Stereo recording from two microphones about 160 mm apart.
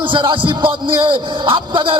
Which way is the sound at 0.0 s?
30° right (ahead or behind).